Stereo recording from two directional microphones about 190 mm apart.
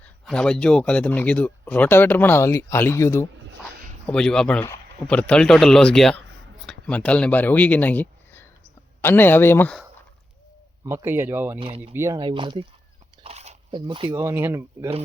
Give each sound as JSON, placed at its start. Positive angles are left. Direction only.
{"t": 0.0, "sound": "speech", "side_deg": 5}
{"t": 4.0, "sound": "speech", "side_deg": 5}
{"t": 10.8, "sound": "speech", "side_deg": -15}
{"t": 13.2, "sound": "biting", "side_deg": -35}
{"t": 13.8, "sound": "speech", "side_deg": -25}
{"t": 14.2, "sound": "speech", "side_deg": -15}